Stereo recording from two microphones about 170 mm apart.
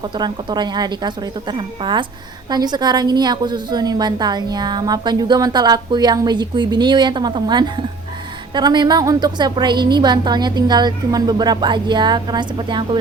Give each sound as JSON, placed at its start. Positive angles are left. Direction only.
{"t": 0.0, "sound": "a woman's voice", "side_deg": -25}